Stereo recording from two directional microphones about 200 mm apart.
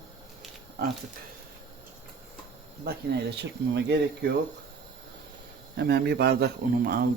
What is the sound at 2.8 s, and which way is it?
Speech, 50° right (ahead or behind).